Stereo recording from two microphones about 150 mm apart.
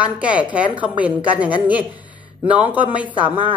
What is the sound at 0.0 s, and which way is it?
A woman's voice, 10° right (ahead or behind).